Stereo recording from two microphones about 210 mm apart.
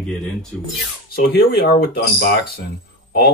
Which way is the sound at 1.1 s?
45° left (ahead or behind).